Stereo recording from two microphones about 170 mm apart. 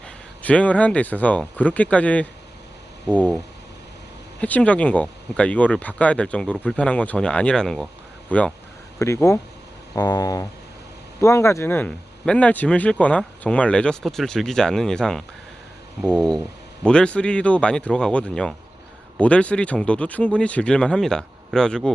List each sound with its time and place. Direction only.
0.4 s speech: 10° left (ahead or behind)